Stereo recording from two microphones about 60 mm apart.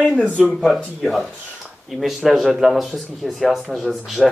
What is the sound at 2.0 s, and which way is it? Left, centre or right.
Speech, centre.